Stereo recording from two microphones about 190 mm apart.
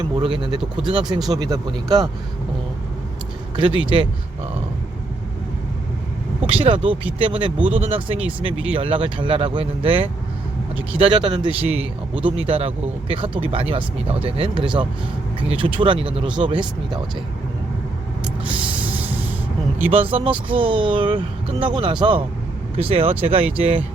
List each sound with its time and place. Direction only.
0.0 s speech: 25° right (ahead or behind)
3.5 s speech: 25° right (ahead or behind)
6.5 s speech: 30° right (ahead or behind)
18.4 s music: 5° right (ahead or behind)
20.1 s speech: 30° right (ahead or behind)